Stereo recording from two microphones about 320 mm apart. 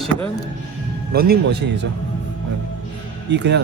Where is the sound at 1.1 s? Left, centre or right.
Right.